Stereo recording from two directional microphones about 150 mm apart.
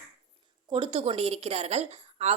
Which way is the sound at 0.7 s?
35° right (ahead or behind).